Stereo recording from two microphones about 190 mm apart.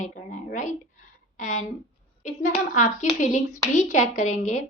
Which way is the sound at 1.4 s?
40° left (ahead or behind).